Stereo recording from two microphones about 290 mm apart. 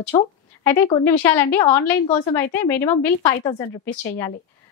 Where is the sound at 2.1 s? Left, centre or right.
Left.